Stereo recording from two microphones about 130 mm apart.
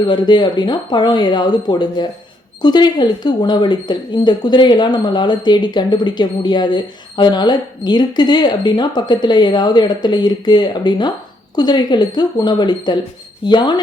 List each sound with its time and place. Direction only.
0.0 s speech: 35° left (ahead or behind)